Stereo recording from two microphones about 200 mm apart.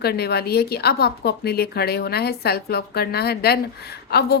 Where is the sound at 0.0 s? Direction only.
55° left (ahead or behind).